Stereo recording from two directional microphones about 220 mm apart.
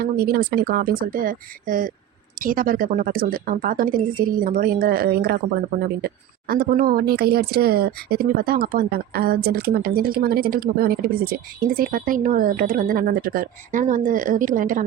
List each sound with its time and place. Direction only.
0.0 s speech: 45° right (ahead or behind)
6.5 s speech: 45° right (ahead or behind)